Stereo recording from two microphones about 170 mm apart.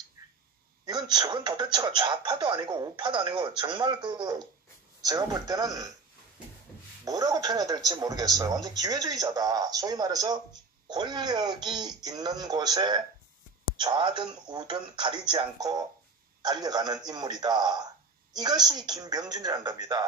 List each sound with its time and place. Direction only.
0.8 s speech: 25° right (ahead or behind)
7.1 s speech: 20° right (ahead or behind)